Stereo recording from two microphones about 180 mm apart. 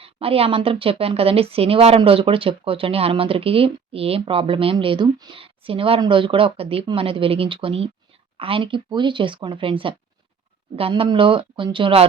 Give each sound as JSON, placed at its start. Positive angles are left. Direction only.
{"t": 0.0, "sound": "a woman's voice", "side_deg": -30}